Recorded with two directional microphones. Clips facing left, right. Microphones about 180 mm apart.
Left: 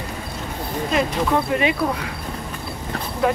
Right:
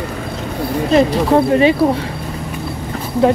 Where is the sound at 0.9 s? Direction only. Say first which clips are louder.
Right 8 dB; 35° right (ahead or behind).